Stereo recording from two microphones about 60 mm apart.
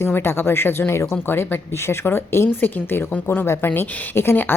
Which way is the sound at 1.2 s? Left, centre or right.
Left.